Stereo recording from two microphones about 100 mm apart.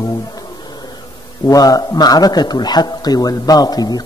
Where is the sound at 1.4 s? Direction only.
40° left (ahead or behind).